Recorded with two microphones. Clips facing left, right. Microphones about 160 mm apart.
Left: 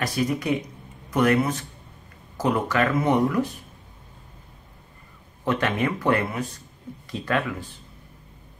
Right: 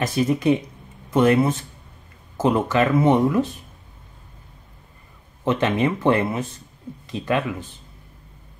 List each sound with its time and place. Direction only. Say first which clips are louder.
0.0 s speech: right 5 dB; 25° right (ahead or behind)
5.4 s speech: right 4 dB; 20° right (ahead or behind)